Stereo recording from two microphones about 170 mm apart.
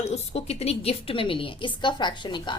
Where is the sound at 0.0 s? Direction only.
40° left (ahead or behind).